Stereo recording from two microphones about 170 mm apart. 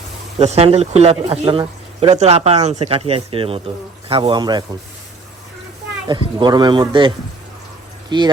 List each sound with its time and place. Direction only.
0.3 s speech: 40° right (ahead or behind)
6.1 s speech: 25° right (ahead or behind)
8.1 s speech: 25° right (ahead or behind)